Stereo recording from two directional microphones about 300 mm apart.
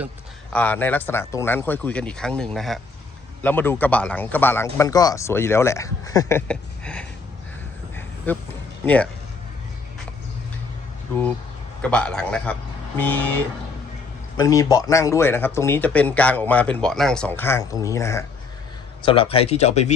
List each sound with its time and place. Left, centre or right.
0.5 s speech: centre
8.3 s speech: centre
11.8 s speech: centre; by 19.9 s left